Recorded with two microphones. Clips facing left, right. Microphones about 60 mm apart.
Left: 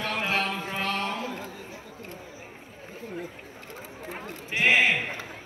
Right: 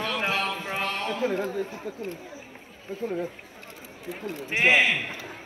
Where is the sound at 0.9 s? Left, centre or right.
Left.